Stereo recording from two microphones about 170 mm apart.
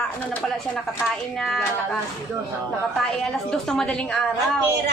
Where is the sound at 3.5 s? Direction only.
5° left (ahead or behind).